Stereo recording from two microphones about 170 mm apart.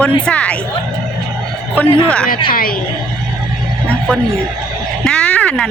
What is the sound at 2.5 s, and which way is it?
Speech, 55° left (ahead or behind).